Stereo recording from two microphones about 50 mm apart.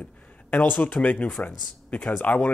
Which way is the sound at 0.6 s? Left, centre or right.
Left.